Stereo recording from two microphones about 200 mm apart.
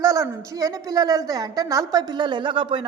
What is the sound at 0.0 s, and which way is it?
A woman's voice, 15° right (ahead or behind).